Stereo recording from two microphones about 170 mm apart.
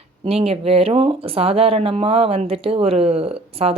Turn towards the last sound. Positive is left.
turn(degrees=-35)  # may be behind; listen again after turning